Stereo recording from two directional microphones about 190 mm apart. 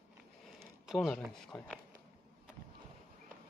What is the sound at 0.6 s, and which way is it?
Speech, centre (ahead or behind).